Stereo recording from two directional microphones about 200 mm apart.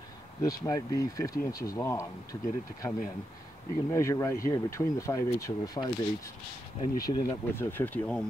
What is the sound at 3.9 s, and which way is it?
Speech, 15° left (ahead or behind).